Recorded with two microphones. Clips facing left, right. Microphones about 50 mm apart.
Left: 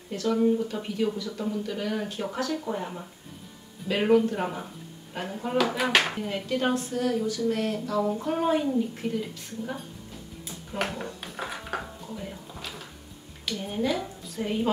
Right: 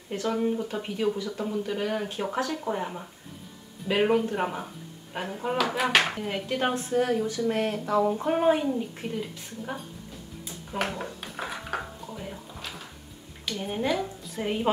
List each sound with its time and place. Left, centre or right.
0.1 s a woman's voice: right; by 6.2 s centre
6.2 s a woman's voice: centre
10.8 s a sound: centre
12.1 s music: centre
13.6 s speech: centre
13.9 s a sound: centre
14.3 s a woman's voice: centre